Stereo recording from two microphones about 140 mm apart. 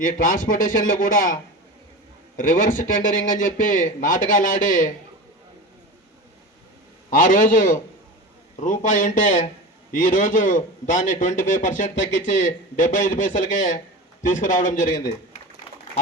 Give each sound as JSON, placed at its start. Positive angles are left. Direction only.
{"t": 0.3, "sound": "a man's voice", "side_deg": 75}
{"t": 7.1, "sound": "a man's voice", "side_deg": 70}